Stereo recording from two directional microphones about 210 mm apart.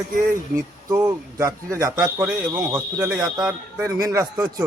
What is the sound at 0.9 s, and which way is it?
Speech, 15° right (ahead or behind).